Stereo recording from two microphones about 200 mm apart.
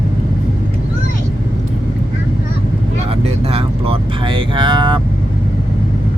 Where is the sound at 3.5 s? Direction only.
25° right (ahead or behind).